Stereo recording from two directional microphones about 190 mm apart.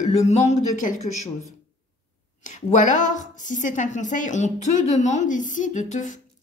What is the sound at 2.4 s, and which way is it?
Speech, 40° left (ahead or behind).